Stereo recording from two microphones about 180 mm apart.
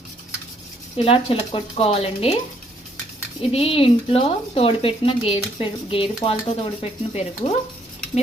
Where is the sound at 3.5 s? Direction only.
30° left (ahead or behind).